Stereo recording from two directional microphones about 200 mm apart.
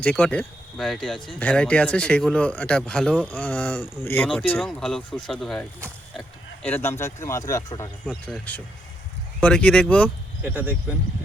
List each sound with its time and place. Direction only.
0.0 s speech: 5° left (ahead or behind)
6.1 s a sound: 5° left (ahead or behind)
7.0 s speech: 15° left (ahead or behind)
8.0 s speech: 5° left (ahead or behind)